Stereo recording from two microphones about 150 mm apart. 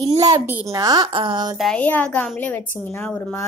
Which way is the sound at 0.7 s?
25° right (ahead or behind).